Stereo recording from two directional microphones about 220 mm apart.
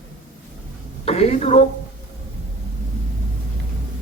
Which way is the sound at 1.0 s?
25° left (ahead or behind).